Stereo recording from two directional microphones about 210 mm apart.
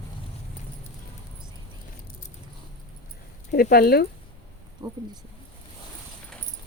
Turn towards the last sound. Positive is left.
turn(degrees=-20)  # may be behind; listen again after turning